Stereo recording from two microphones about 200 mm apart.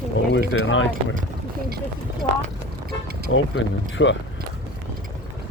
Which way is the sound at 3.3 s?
70° left (ahead or behind).